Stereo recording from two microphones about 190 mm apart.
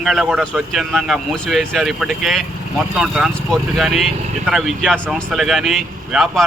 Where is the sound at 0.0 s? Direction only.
Centre (ahead or behind).